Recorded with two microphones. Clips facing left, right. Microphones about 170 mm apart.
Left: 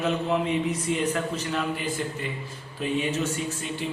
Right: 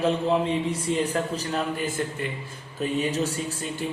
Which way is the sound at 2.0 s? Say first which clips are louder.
Right 2 dB; 50° right (ahead or behind).